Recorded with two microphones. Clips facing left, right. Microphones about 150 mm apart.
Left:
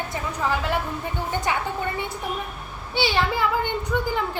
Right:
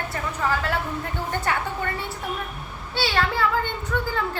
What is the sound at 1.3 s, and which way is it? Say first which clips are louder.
Speech: even; 15° left (ahead or behind).